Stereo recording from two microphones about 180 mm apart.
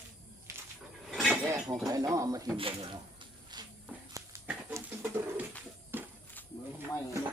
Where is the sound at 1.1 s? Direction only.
Centre (ahead or behind).